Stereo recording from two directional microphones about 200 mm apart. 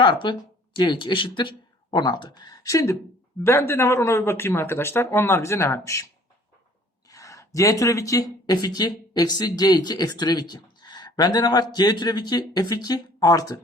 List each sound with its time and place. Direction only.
0.0 s speech: 25° left (ahead or behind)
7.1 s speech: 15° left (ahead or behind)